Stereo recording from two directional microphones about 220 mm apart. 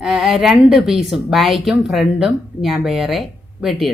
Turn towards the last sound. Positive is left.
turn(degrees=-5)  # may be behind; listen again after turning